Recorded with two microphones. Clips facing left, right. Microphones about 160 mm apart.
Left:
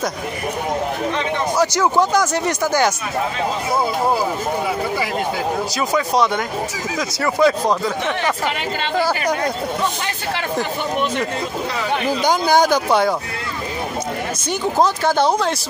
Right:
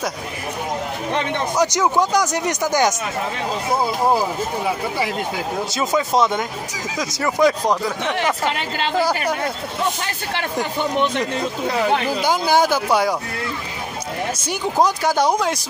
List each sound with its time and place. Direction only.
1.6 s speech: 15° right (ahead or behind)
7.0 s speech: 15° right (ahead or behind)
12.2 s speech: 5° right (ahead or behind)
14.5 s speech: 10° right (ahead or behind)